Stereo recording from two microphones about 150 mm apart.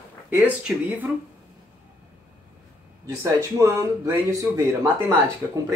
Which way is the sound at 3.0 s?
20° right (ahead or behind).